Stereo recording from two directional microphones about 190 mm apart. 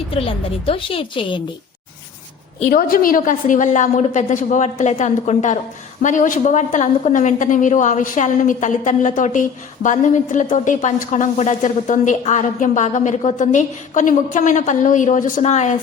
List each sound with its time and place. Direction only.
0.1 s a woman's voice: 30° left (ahead or behind)
2.6 s a woman's voice: 45° left (ahead or behind)